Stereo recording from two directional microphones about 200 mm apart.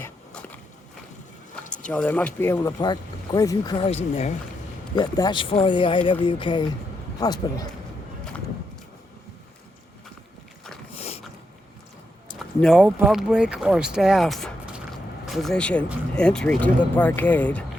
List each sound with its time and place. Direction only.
0.0 s a sound: 10° left (ahead or behind)
1.9 s speech: 5° left (ahead or behind)
4.1 s speech: 35° left (ahead or behind)
4.9 s speech: 20° left (ahead or behind)
10.9 s a sound: 30° left (ahead or behind)
12.4 s speech: centre (ahead or behind)